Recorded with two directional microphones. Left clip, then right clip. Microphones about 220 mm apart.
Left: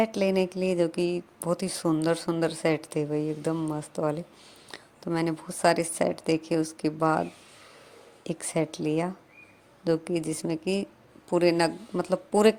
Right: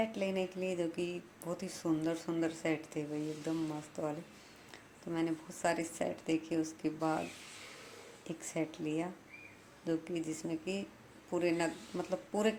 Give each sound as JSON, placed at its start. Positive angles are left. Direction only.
{"t": 0.0, "sound": "speech", "side_deg": 40}
{"t": 8.2, "sound": "speech", "side_deg": 40}